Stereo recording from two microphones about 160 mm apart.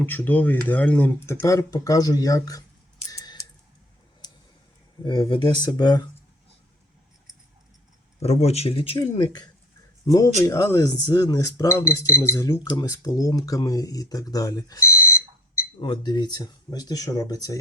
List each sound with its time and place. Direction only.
0.0 s speech: 10° left (ahead or behind)
3.1 s typing: 20° left (ahead or behind)
4.2 s a sound: 25° left (ahead or behind)
5.0 s speech: 30° left (ahead or behind)
8.2 s speech: 40° left (ahead or behind); by 15.2 s 15° left (ahead or behind)
15.8 s speech: 30° left (ahead or behind)